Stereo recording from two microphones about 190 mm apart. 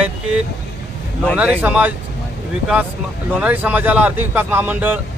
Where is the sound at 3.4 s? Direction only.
10° right (ahead or behind).